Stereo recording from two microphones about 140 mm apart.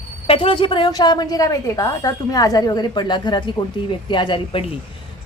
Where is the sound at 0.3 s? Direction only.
40° left (ahead or behind).